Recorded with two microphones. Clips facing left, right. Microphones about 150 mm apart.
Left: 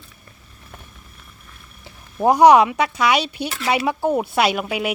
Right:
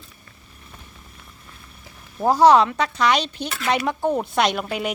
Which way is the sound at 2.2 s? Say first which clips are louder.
Left 3 dB; 15° left (ahead or behind).